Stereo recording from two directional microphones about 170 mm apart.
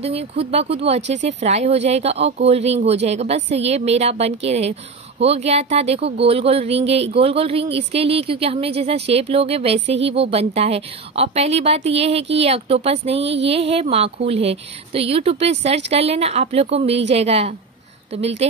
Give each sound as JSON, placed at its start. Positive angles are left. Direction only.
{"t": 0.0, "sound": "speech", "side_deg": -35}
{"t": 13.2, "sound": "a sound", "side_deg": -90}
{"t": 13.5, "sound": "speech", "side_deg": -35}